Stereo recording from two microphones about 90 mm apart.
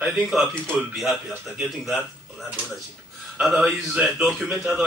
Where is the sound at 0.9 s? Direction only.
5° right (ahead or behind).